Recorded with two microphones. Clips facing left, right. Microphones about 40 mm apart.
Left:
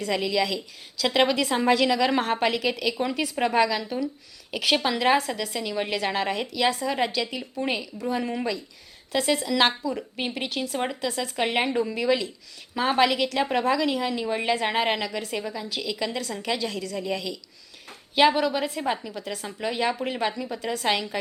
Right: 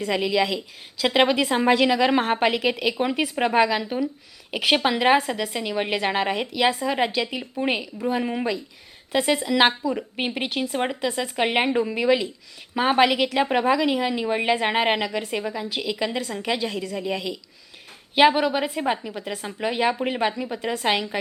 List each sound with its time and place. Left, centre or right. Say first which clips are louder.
0.0 s a woman's voice: right 3 dB; centre